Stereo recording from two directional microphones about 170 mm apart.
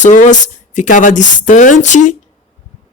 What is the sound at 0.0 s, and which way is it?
Speech, 45° left (ahead or behind).